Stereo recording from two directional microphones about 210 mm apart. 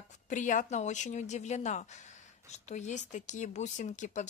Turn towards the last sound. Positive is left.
turn(degrees=35)  # may be behind; listen again after turning